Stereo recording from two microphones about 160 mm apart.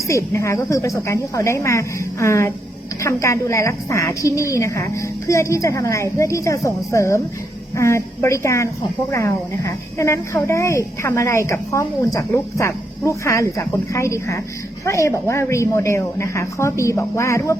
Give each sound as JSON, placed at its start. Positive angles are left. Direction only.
{"t": 0.1, "sound": "a woman's voice", "side_deg": 20}